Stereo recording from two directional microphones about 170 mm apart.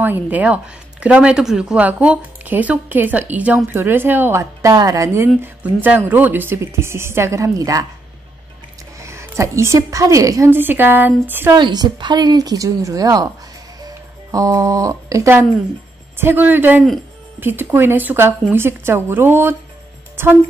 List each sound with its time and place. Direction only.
0.0 s speech: 10° right (ahead or behind)
9.0 s speech: 15° right (ahead or behind)
11.5 s a woman's voice: 25° right (ahead or behind)